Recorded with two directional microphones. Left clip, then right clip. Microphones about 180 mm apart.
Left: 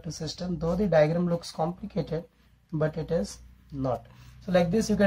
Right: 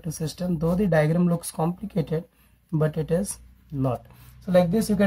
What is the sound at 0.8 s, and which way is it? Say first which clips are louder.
Speech: left 1 dB; 40° right (ahead or behind).